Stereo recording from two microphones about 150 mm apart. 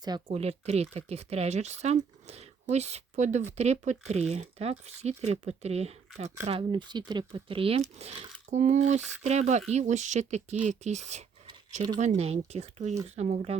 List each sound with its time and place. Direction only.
0.0 s speech: 25° right (ahead or behind)
0.3 s speech: 45° right (ahead or behind)
6.5 s speech: 35° right (ahead or behind); by 13.6 s 50° right (ahead or behind)